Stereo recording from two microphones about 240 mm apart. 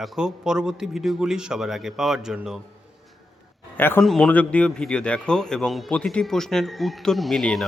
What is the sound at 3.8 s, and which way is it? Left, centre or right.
A man's voice, centre.